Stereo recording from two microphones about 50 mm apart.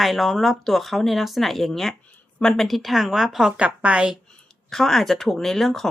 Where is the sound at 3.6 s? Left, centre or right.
Right.